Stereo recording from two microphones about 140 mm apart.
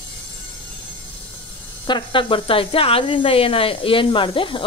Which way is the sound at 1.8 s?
35° left (ahead or behind).